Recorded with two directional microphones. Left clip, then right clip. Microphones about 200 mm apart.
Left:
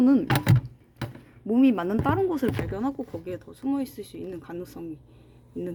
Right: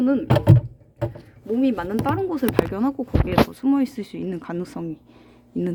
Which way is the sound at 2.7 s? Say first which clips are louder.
Right 5 dB; 5° right (ahead or behind).